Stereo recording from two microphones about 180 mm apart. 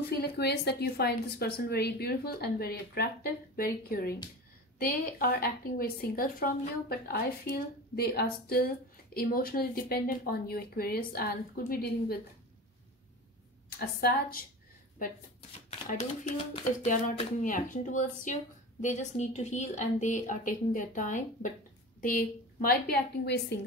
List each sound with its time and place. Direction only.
0.2 s a woman's voice: 65° left (ahead or behind)
13.7 s a woman's voice: 55° left (ahead or behind)
15.7 s a woman's voice: 40° left (ahead or behind); by 23.6 s 65° left (ahead or behind)